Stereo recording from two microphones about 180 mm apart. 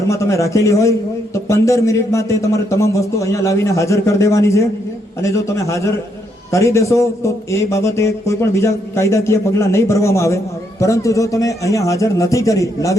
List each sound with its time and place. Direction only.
0.1 s a man's voice: 15° left (ahead or behind)